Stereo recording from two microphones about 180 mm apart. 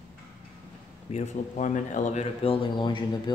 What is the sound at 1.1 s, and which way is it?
Speech, 40° left (ahead or behind).